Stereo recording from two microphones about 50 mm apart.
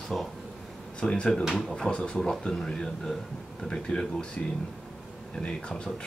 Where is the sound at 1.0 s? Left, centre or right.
Centre.